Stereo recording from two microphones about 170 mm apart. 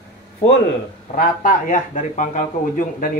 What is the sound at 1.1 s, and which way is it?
A man's voice, 50° left (ahead or behind).